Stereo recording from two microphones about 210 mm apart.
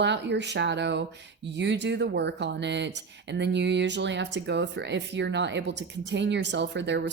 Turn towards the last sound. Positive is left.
turn(degrees=-55)  # may be behind; listen again after turning